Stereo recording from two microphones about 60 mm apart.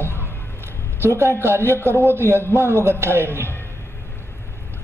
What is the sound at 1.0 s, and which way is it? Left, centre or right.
A man's voice, right.